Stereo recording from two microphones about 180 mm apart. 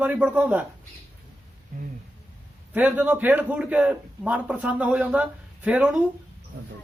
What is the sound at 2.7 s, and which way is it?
Speech, 10° right (ahead or behind).